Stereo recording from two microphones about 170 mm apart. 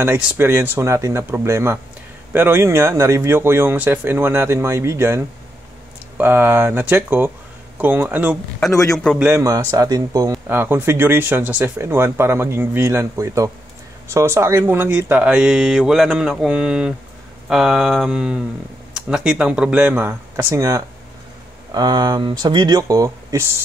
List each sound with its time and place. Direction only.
0.0 s speech: 15° right (ahead or behind)
8.9 s speech: centre (ahead or behind)
9.2 s speech: 15° right (ahead or behind)